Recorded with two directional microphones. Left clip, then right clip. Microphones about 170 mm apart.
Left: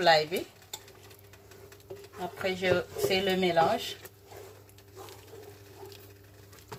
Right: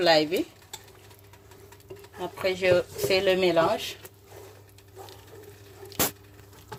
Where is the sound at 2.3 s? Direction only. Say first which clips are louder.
Right 6 dB; 40° right (ahead or behind).